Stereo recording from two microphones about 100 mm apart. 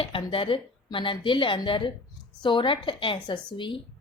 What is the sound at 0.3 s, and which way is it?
A woman's voice, 60° left (ahead or behind).